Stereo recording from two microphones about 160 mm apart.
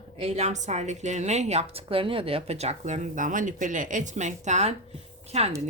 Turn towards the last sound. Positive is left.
turn(degrees=-40)  # may be behind; listen again after turning